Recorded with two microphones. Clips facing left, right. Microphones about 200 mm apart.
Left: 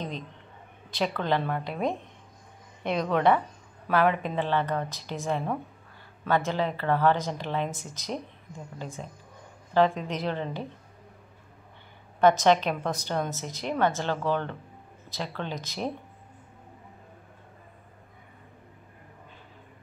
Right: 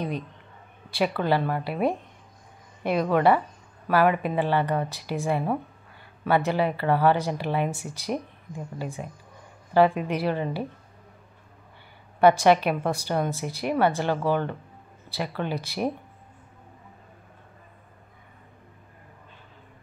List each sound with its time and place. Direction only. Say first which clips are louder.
0.9 s a woman's voice: right 3 dB; 10° right (ahead or behind)
12.2 s a woman's voice: right 3 dB; 10° right (ahead or behind)